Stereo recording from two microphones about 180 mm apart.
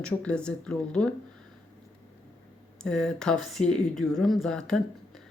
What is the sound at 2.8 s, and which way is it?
Speech, 5° left (ahead or behind).